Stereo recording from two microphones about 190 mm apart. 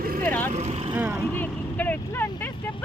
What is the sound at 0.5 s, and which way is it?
Speech, 35° right (ahead or behind).